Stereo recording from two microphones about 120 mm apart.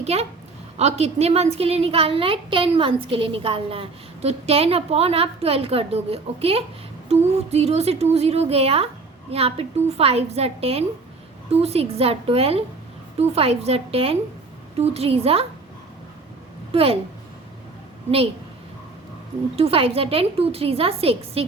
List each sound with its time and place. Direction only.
0.0 s a woman's voice: 60° right (ahead or behind)
16.7 s a woman's voice: 55° right (ahead or behind)
19.5 s a woman's voice: 55° right (ahead or behind)